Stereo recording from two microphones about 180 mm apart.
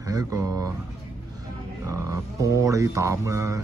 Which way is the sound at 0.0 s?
20° right (ahead or behind).